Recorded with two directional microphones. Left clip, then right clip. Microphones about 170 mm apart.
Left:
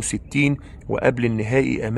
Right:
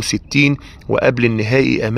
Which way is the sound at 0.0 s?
25° right (ahead or behind).